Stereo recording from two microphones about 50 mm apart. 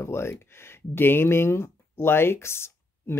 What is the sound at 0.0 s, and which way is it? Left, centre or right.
Speech, left.